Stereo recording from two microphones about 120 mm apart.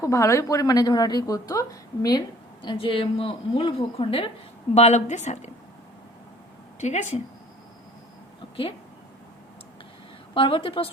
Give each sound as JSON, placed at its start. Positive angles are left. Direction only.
{"t": 0.0, "sound": "a woman's voice", "side_deg": 25}
{"t": 4.7, "sound": "a woman's voice", "side_deg": 70}
{"t": 6.7, "sound": "a woman's voice", "side_deg": 80}
{"t": 10.3, "sound": "a woman's voice", "side_deg": 45}